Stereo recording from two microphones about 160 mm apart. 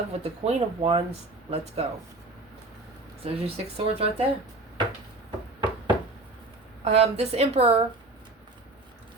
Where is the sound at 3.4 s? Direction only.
40° right (ahead or behind).